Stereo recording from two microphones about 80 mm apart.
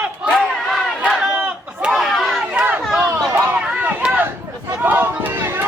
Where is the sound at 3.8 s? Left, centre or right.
Centre.